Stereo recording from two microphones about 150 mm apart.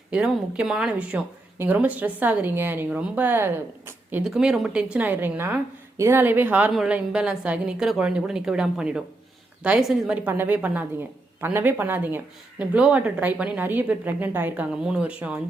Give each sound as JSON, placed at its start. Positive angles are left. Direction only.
{"t": 0.1, "sound": "speech", "side_deg": -10}
{"t": 4.2, "sound": "a woman's voice", "side_deg": -5}